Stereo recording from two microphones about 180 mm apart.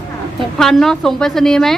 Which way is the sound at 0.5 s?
Centre (ahead or behind).